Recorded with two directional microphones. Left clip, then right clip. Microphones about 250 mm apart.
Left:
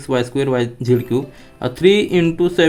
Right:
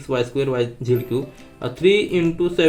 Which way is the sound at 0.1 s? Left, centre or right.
Left.